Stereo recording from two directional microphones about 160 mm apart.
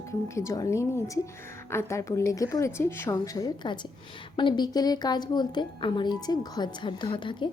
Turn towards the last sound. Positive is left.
turn(degrees=30)  # may be behind; listen again after turning